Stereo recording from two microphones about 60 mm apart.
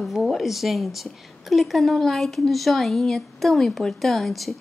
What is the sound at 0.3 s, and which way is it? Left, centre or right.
A woman's voice, centre.